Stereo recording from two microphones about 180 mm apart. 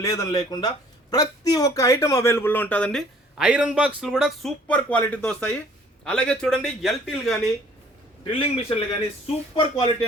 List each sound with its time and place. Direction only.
0.0 s a man's voice: 20° left (ahead or behind); by 7.3 s centre (ahead or behind)
8.2 s a man's voice: 30° left (ahead or behind)